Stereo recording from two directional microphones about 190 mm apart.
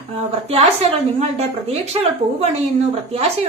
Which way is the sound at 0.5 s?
35° right (ahead or behind).